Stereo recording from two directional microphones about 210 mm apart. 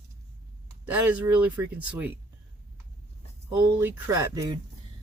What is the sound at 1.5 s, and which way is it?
Speech, 10° right (ahead or behind).